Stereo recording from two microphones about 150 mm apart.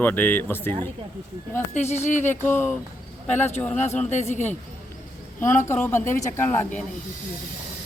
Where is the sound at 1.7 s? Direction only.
50° left (ahead or behind).